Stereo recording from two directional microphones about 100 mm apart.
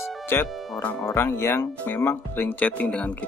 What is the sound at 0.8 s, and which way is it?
Speech, 10° left (ahead or behind).